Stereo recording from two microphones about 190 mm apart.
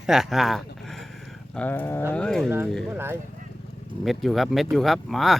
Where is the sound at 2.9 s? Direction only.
10° right (ahead or behind).